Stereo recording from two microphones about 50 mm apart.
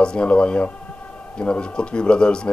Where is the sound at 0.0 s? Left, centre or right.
Centre.